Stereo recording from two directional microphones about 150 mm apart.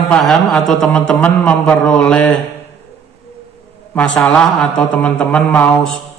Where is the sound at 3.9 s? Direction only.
10° left (ahead or behind).